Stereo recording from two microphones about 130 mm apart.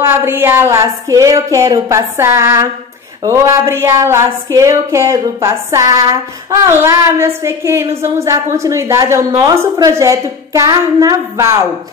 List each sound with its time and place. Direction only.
0.0 s speech: 20° right (ahead or behind)